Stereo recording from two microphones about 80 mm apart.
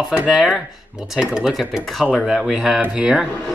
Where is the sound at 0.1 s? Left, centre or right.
Centre.